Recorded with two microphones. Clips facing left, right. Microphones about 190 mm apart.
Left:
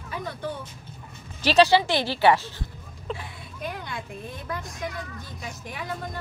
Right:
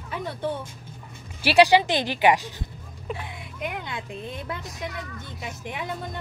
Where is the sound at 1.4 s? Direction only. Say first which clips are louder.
Right 1 dB; 15° right (ahead or behind).